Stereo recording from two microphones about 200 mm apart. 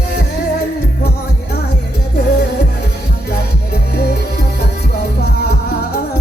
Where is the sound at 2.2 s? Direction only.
60° left (ahead or behind).